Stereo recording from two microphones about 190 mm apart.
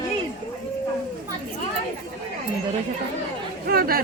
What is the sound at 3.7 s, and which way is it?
Speech, 50° right (ahead or behind).